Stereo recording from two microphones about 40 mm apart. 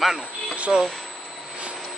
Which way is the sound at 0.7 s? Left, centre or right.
Centre.